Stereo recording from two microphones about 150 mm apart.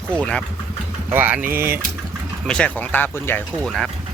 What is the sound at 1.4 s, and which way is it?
Speech, 75° right (ahead or behind).